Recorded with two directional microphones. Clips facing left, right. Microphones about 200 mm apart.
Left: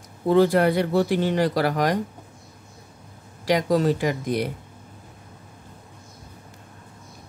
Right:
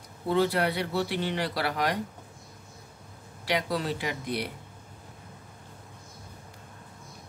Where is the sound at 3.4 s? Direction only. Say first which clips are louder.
Left 9 dB; 45° left (ahead or behind).